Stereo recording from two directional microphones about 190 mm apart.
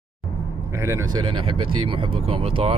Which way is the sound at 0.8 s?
20° right (ahead or behind).